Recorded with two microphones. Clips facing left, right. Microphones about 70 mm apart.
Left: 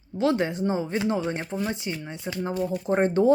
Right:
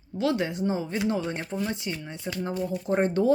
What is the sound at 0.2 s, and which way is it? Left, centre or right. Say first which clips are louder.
Speech: left 3 dB; left.